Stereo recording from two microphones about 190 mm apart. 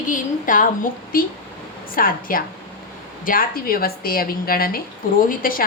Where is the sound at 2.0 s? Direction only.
50° left (ahead or behind).